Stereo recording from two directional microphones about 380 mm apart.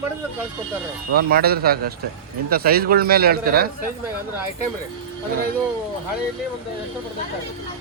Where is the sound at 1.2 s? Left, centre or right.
Right.